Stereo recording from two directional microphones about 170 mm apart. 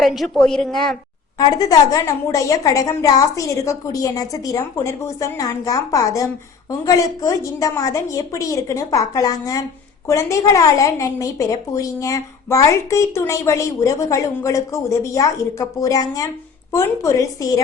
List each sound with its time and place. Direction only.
0.0 s a woman's voice: centre (ahead or behind)
1.4 s a woman's voice: 20° left (ahead or behind)